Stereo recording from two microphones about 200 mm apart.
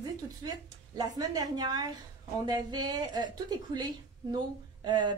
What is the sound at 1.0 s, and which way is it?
A woman's voice, 20° right (ahead or behind).